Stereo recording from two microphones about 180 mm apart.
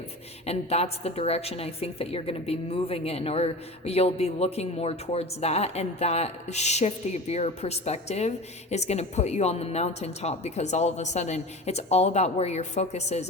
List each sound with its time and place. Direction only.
0.4 s a woman's voice: 35° left (ahead or behind)